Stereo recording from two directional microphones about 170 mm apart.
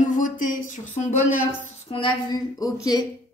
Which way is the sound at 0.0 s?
50° left (ahead or behind).